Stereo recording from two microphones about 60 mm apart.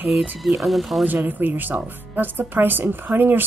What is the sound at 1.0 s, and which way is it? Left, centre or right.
Speech, right.